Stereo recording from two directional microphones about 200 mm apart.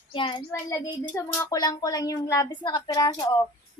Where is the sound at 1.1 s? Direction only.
15° left (ahead or behind).